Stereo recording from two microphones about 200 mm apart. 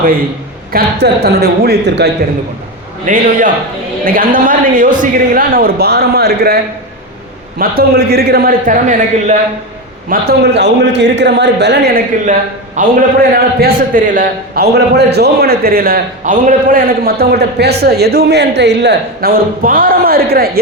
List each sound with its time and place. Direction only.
0.7 s a man's voice: 55° right (ahead or behind)
3.1 s a man's voice: 40° right (ahead or behind)
7.6 s a man's voice: 50° right (ahead or behind)
10.1 s a man's voice: 55° right (ahead or behind)
12.2 s a man's voice: 40° right (ahead or behind)